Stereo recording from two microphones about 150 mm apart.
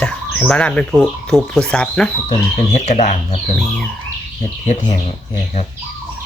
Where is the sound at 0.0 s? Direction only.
10° left (ahead or behind).